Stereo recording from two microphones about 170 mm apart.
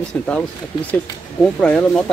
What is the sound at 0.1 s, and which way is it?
Speech, 5° left (ahead or behind).